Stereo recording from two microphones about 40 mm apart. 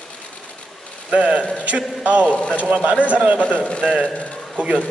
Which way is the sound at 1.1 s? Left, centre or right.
Right.